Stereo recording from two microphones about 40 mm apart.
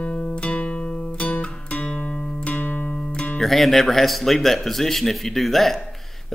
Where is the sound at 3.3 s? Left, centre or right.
Centre.